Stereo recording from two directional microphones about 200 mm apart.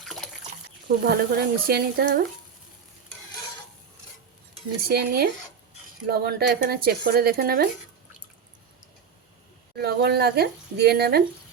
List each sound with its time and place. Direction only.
0.0 s water: centre (ahead or behind)
0.9 s speech: 50° right (ahead or behind)
4.8 s speech: 50° right (ahead or behind)
9.7 s speech: 55° right (ahead or behind)